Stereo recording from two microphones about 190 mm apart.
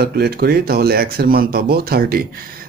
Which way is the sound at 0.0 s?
55° right (ahead or behind).